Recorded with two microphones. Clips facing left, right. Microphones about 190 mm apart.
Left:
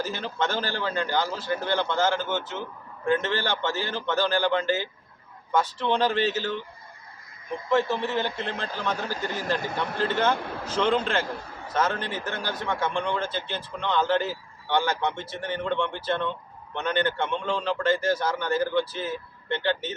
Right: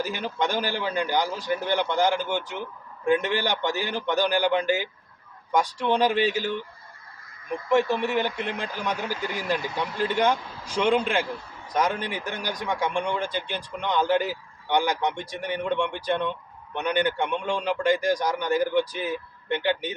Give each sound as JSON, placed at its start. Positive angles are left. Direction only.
{"t": 0.0, "sound": "a man's voice", "side_deg": -15}
{"t": 7.7, "sound": "a man's voice", "side_deg": -15}
{"t": 10.3, "sound": "speech", "side_deg": 60}
{"t": 10.7, "sound": "a man's voice", "side_deg": -15}